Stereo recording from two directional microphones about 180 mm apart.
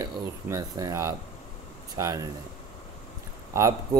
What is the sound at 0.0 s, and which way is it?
A man's voice, 20° right (ahead or behind).